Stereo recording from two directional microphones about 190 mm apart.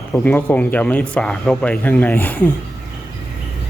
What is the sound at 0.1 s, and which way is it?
Speech, 10° left (ahead or behind).